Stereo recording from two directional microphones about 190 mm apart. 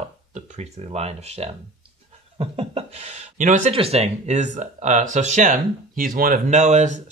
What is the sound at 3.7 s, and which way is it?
Speech, 30° right (ahead or behind).